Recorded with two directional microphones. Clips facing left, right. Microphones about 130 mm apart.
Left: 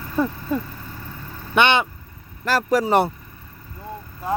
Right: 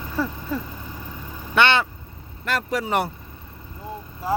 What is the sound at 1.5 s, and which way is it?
Speech, 20° left (ahead or behind).